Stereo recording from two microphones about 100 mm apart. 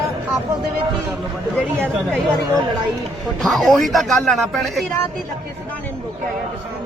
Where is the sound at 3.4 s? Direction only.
Centre (ahead or behind).